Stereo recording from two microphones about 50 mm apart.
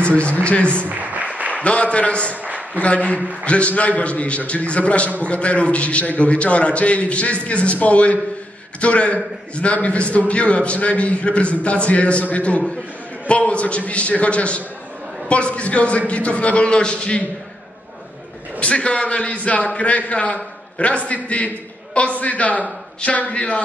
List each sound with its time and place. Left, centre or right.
0.1 s a man's voice: left
0.8 s applause: right
1.5 s a man's voice: left
2.4 s a sound: right
2.8 s a man's voice: left
18.6 s a man's voice: left